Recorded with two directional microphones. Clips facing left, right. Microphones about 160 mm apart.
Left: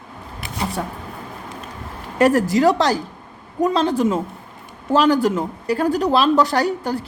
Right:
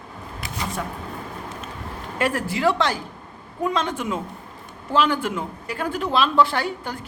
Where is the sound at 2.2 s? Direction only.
40° left (ahead or behind).